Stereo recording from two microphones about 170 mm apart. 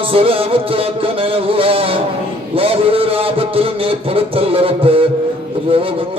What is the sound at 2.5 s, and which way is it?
A man's voice, 35° right (ahead or behind).